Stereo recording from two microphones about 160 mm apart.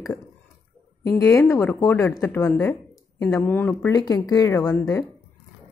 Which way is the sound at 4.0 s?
25° left (ahead or behind).